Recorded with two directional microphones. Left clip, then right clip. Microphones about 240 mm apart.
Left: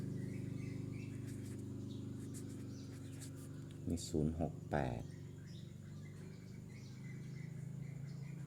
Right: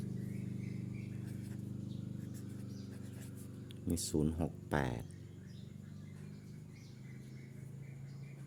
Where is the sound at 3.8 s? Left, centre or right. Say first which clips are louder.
Right 4 dB; right.